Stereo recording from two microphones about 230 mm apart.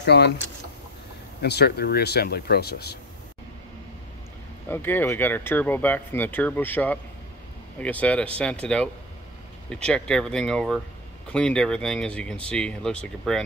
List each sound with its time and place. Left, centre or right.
0.0 s speech: left
1.4 s speech: left
4.6 s speech: centre